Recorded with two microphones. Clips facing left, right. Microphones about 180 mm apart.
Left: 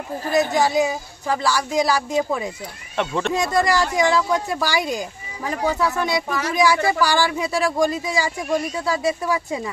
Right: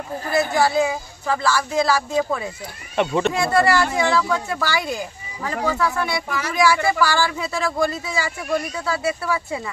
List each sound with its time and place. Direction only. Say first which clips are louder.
0.2 s speech: left 1 dB; 20° left (ahead or behind)
3.0 s speech: right 3 dB; 5° right (ahead or behind)
3.3 s speech: even; 15° left (ahead or behind)